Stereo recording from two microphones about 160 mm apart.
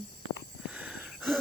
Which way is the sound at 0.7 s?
5° right (ahead or behind).